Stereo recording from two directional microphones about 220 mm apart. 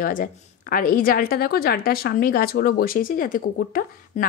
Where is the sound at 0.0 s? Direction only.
40° left (ahead or behind).